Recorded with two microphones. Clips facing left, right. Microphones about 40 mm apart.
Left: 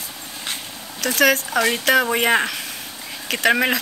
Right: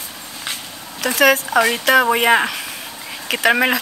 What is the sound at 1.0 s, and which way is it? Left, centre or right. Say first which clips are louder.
Speech: right 3 dB; centre.